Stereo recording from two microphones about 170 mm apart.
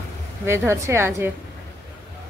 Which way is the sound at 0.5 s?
15° right (ahead or behind).